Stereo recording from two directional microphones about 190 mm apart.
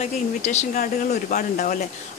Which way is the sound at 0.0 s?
35° left (ahead or behind).